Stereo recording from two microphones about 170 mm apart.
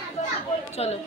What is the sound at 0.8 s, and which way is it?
Speech, 35° left (ahead or behind).